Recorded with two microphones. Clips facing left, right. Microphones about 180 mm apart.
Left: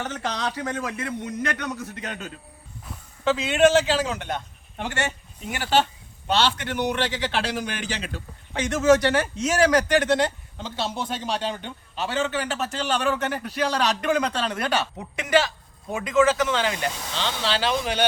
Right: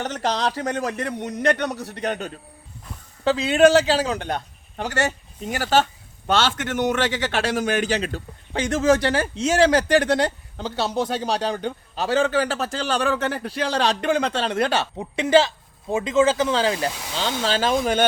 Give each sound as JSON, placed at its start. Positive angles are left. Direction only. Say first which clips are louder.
{"t": 0.0, "sound": "a man's voice", "louder": "right 5 dB", "side_deg": -35}
{"t": 2.0, "sound": "a man's voice", "louder": "right 8 dB", "side_deg": -65}
{"t": 3.2, "sound": "a man's voice", "louder": "right 3 dB", "side_deg": -35}
{"t": 17.2, "sound": "speech", "louder": "right 4 dB", "side_deg": -45}